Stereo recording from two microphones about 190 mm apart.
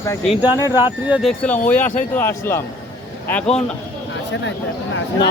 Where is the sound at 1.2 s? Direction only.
5° left (ahead or behind).